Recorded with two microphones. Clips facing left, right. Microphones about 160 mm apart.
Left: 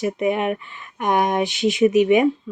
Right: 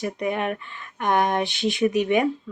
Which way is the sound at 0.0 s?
15° left (ahead or behind).